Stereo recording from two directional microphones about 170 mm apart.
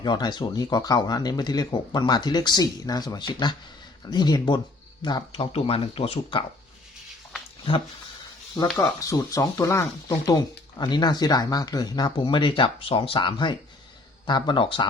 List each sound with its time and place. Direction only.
0.0 s speech: 25° left (ahead or behind)
8.8 s speech: 20° left (ahead or behind)